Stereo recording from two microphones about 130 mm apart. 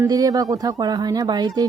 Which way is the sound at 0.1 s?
25° right (ahead or behind).